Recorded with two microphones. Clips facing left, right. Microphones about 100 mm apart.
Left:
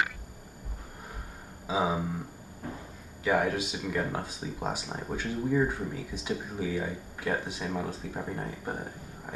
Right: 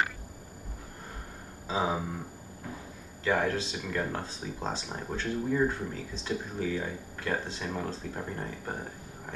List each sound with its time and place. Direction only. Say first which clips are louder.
1.7 s speech: left 1 dB; 10° left (ahead or behind)
3.3 s speech: left 1 dB; 10° left (ahead or behind)